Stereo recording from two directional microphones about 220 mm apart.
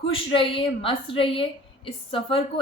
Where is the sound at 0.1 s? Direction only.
25° left (ahead or behind).